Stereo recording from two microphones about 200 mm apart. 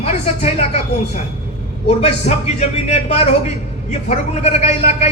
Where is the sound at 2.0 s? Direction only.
30° left (ahead or behind).